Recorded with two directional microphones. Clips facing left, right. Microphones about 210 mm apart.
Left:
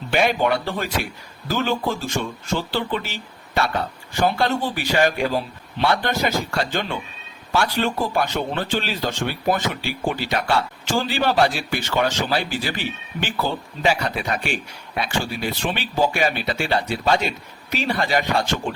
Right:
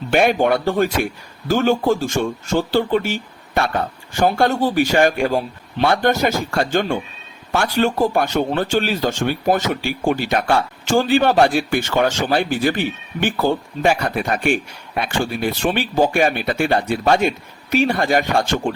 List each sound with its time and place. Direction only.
0.1 s a man's voice: 50° right (ahead or behind)